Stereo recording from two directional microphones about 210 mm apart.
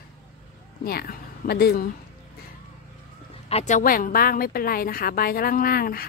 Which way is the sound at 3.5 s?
30° left (ahead or behind).